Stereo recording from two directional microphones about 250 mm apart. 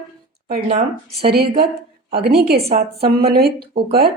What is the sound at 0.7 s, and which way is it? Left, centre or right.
Speech, right.